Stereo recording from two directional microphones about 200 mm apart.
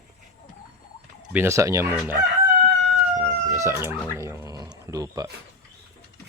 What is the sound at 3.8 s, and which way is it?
Speech, 15° right (ahead or behind).